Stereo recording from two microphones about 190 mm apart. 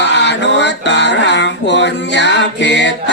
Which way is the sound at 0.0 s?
65° left (ahead or behind).